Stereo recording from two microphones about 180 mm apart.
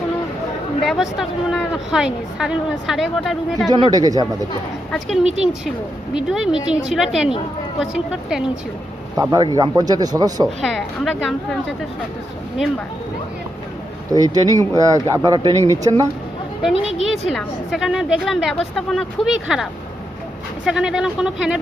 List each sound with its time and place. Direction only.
0.9 s speech: centre (ahead or behind)
3.7 s speech: 25° right (ahead or behind)
4.9 s speech: centre (ahead or behind)
9.3 s speech: 20° right (ahead or behind)
10.4 s speech: centre (ahead or behind)
14.1 s speech: 20° right (ahead or behind)
17.0 s speech: centre (ahead or behind)
20.7 s speech: 5° right (ahead or behind)